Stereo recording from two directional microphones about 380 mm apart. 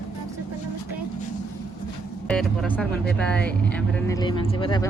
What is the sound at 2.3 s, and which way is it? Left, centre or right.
Speech, centre.